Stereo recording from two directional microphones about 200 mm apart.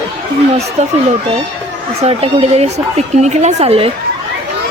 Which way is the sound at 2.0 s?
30° right (ahead or behind).